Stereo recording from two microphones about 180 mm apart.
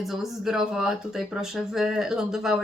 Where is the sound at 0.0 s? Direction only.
Centre (ahead or behind).